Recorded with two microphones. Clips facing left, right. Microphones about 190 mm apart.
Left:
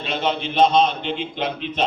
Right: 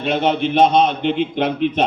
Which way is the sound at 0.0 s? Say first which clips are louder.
Right 6 dB; 55° right (ahead or behind).